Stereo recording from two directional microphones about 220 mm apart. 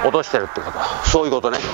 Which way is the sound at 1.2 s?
40° right (ahead or behind).